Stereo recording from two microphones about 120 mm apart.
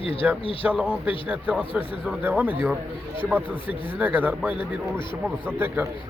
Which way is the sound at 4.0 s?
15° right (ahead or behind).